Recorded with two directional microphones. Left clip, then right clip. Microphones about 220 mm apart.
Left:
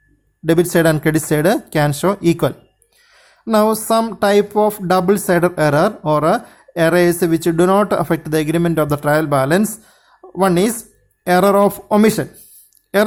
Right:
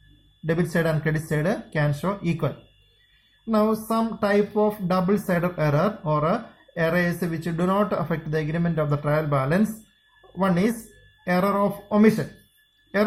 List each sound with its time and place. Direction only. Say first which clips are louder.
0.4 s speech: left 11 dB; 45° left (ahead or behind)